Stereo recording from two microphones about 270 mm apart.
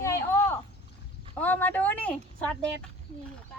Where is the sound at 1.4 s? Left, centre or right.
Centre.